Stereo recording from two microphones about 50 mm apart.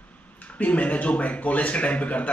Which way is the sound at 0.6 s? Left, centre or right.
Left.